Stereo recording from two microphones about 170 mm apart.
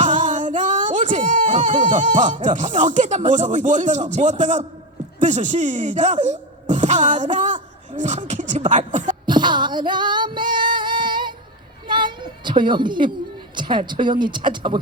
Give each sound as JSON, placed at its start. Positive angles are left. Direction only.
{"t": 0.0, "sound": "speech", "side_deg": -45}
{"t": 9.2, "sound": "female singing", "side_deg": -25}
{"t": 11.9, "sound": "a sound", "side_deg": -25}
{"t": 13.6, "sound": "speech", "side_deg": -25}